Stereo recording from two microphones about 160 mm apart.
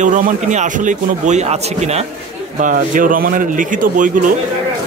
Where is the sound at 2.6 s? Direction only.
55° right (ahead or behind).